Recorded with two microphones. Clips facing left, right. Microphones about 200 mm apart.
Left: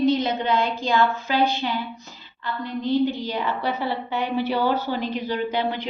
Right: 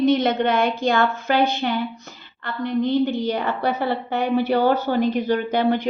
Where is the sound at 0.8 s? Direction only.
50° right (ahead or behind).